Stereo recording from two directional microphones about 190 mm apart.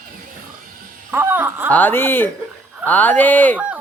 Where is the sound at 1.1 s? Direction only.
10° right (ahead or behind).